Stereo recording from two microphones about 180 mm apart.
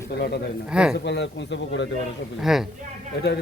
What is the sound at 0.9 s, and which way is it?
Speech, 70° left (ahead or behind).